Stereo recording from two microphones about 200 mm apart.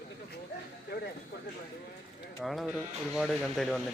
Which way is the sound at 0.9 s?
50° left (ahead or behind).